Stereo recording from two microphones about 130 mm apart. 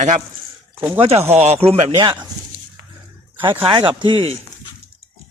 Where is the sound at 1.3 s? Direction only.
55° right (ahead or behind).